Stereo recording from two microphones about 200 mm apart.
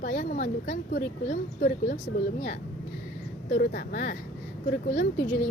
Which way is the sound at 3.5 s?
45° left (ahead or behind).